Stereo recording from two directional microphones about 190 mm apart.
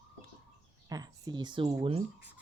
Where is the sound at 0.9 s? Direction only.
20° right (ahead or behind).